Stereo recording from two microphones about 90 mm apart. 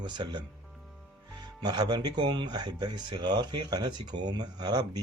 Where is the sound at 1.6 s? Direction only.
55° right (ahead or behind).